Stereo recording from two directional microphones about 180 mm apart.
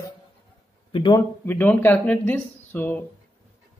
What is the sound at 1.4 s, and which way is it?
A man's voice, 10° left (ahead or behind).